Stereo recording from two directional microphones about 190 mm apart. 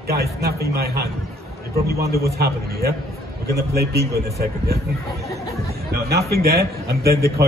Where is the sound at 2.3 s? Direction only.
55° right (ahead or behind).